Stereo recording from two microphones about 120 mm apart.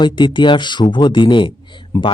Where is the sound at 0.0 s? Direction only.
40° left (ahead or behind).